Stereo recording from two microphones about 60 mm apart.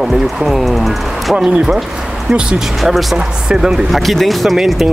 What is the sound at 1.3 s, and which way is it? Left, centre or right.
Speech, centre.